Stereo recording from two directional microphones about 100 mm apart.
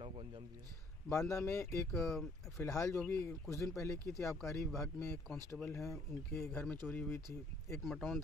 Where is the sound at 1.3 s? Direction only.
30° left (ahead or behind).